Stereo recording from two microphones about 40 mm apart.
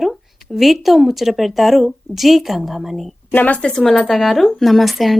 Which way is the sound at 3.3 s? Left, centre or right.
Left.